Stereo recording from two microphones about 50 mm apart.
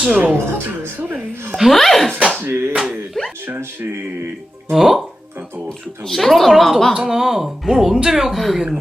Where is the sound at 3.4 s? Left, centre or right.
Right.